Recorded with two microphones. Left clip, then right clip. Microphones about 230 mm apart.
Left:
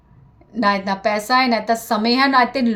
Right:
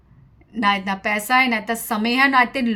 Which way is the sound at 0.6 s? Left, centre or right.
Right.